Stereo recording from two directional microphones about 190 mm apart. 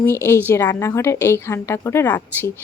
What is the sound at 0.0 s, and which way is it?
Speech, 15° left (ahead or behind).